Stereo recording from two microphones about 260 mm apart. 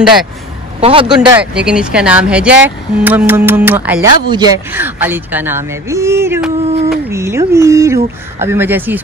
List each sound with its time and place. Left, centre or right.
0.7 s a man's voice: right
1.2 s speech: centre
6.6 s a sound: right
7.1 s speech: centre